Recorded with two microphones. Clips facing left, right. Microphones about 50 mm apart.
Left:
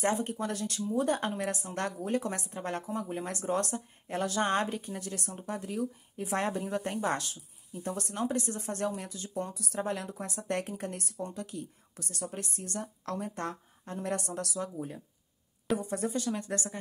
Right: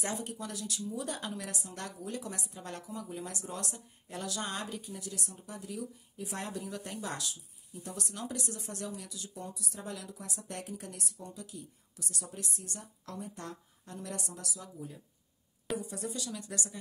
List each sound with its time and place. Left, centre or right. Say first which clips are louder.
0.0 s a woman's voice: left 8 dB; left
15.8 s speech: left 7 dB; left